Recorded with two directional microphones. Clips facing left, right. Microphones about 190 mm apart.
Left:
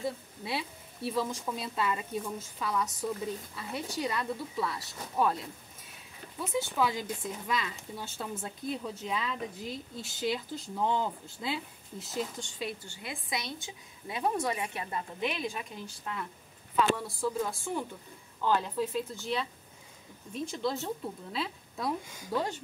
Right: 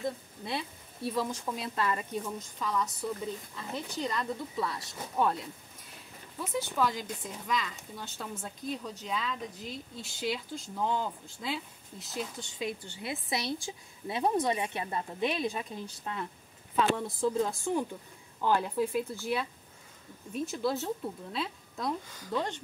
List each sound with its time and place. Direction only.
0.0 s speech: 5° left (ahead or behind)
12.6 s speech: 20° right (ahead or behind); by 22.6 s 5° left (ahead or behind)